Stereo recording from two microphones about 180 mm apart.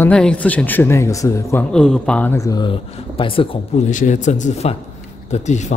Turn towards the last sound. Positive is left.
turn(degrees=40)  # may be behind; listen again after turning